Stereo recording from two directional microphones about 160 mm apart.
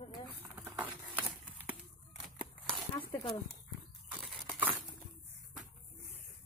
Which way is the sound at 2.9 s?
25° left (ahead or behind).